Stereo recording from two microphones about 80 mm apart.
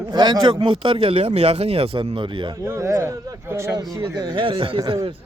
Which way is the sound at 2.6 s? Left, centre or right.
Right.